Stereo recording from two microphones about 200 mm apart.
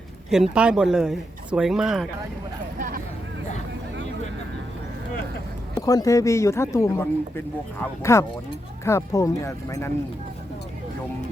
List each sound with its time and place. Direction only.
0.3 s speech: centre (ahead or behind)
2.7 s vehicle: 45° right (ahead or behind)
5.7 s speech: 20° left (ahead or behind)